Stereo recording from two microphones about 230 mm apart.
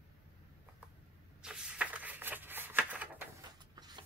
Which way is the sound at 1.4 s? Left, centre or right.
Centre.